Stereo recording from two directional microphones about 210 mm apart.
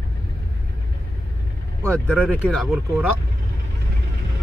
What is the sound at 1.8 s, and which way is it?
Speech, 5° left (ahead or behind).